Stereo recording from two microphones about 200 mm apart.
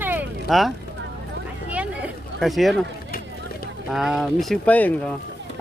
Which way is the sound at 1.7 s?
5° right (ahead or behind).